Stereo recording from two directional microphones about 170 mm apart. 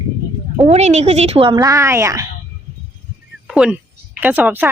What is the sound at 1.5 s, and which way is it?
Speech, 15° right (ahead or behind).